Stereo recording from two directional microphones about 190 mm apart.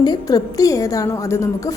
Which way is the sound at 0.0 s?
20° left (ahead or behind).